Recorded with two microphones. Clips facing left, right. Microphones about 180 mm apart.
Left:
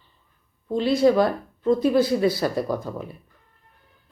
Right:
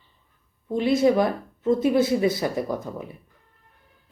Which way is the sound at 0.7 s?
20° right (ahead or behind).